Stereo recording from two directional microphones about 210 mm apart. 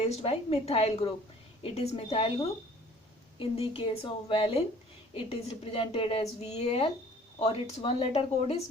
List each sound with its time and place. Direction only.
0.0 s a woman's voice: 30° left (ahead or behind)